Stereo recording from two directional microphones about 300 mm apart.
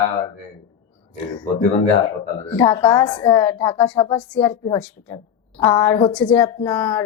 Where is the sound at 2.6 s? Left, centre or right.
Centre.